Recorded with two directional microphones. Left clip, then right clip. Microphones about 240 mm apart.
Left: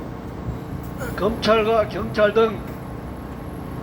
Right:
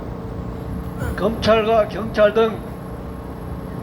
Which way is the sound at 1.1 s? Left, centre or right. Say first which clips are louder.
Right 2 dB; right.